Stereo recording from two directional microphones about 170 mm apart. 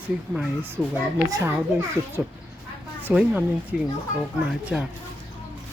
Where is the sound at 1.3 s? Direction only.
15° right (ahead or behind).